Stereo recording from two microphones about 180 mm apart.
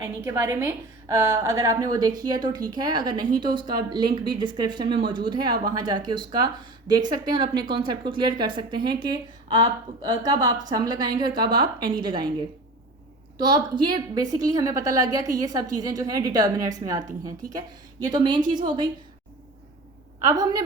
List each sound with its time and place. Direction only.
0.0 s a woman's voice: 15° right (ahead or behind)
13.4 s speech: 25° right (ahead or behind)
18.0 s speech: 25° right (ahead or behind)
20.2 s speech: 20° right (ahead or behind)